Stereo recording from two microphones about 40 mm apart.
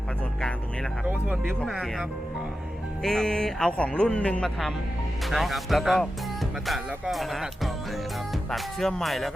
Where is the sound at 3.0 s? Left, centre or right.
Centre; by 4.4 s left.